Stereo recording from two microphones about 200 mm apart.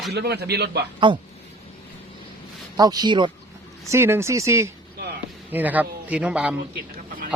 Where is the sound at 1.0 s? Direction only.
25° right (ahead or behind).